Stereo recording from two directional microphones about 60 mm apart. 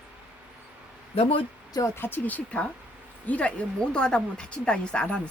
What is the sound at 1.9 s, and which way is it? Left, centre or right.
Speech, left.